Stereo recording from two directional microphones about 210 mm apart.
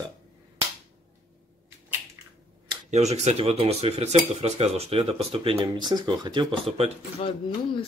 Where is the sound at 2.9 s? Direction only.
30° right (ahead or behind).